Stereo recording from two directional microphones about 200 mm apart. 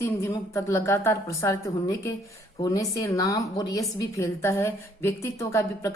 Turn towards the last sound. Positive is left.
turn(degrees=15)  # may be behind; listen again after turning